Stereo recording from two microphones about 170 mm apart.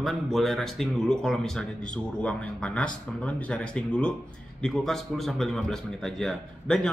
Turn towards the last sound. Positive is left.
turn(degrees=5)  # may be behind; listen again after turning